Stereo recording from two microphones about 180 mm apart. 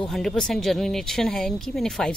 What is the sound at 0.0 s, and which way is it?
Speech, centre (ahead or behind).